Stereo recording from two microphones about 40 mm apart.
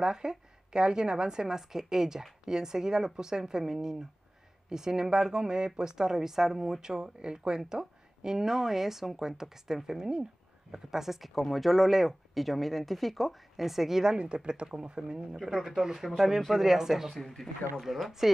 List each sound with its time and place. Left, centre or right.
0.0 s speech: centre
14.1 s speech: right
17.1 s speech: centre